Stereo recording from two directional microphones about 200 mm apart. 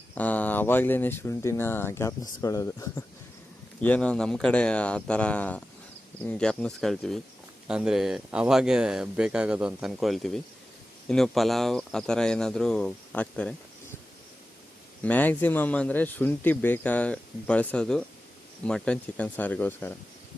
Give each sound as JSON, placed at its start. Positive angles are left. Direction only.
{"t": 0.1, "sound": "speech", "side_deg": 10}
{"t": 15.0, "sound": "speech", "side_deg": 10}